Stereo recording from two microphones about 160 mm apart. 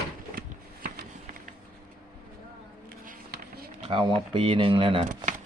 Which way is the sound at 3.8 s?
30° right (ahead or behind).